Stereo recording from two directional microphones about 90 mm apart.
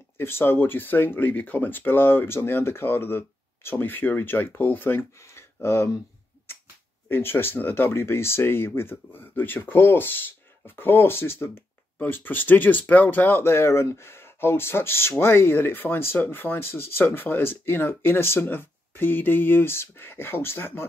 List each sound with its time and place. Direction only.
0.2 s speech: 25° left (ahead or behind)
7.1 s speech: 25° left (ahead or behind)